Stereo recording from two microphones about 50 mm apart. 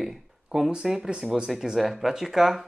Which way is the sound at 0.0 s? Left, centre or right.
Centre.